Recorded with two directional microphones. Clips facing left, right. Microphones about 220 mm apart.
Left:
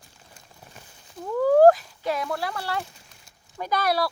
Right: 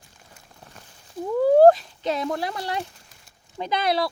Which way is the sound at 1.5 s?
25° right (ahead or behind).